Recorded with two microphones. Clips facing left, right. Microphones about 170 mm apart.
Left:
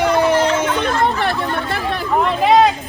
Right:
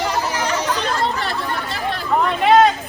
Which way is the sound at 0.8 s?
55° left (ahead or behind).